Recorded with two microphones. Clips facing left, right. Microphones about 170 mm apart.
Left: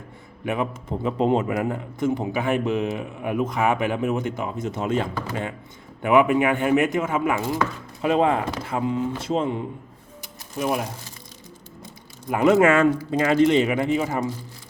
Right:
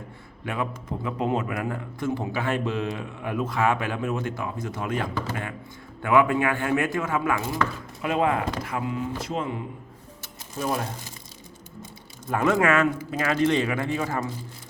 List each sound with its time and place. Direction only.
0.4 s a man's voice: 20° left (ahead or behind)
10.6 s speech: 15° left (ahead or behind)
12.3 s a man's voice: 20° left (ahead or behind)